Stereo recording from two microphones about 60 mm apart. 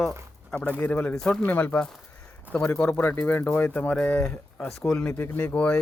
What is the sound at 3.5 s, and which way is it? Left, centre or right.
Speech, left.